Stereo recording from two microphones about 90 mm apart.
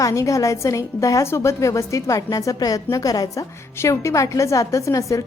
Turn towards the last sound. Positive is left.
turn(degrees=35)  # may be behind; listen again after turning